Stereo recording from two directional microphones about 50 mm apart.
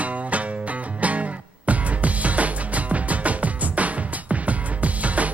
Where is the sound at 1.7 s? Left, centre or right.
Right.